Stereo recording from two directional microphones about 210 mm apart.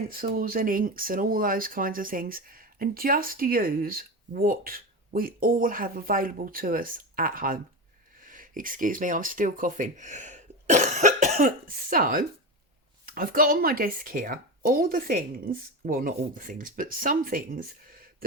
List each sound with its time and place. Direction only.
0.1 s speech: 45° right (ahead or behind)